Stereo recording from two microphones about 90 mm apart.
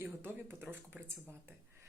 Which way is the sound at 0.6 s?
20° right (ahead or behind).